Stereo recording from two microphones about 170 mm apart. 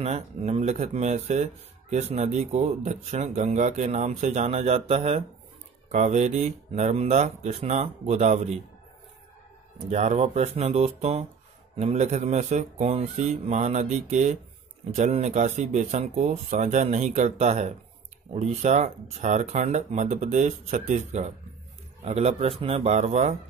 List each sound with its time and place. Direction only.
0.0 s speech: 40° right (ahead or behind)
9.8 s speech: 40° right (ahead or behind)